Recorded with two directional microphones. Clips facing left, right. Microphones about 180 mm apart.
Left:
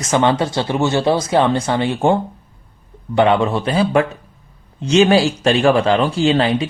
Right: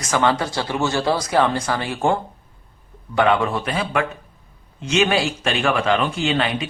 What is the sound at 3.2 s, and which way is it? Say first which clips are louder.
Speech: left 4 dB; 25° left (ahead or behind).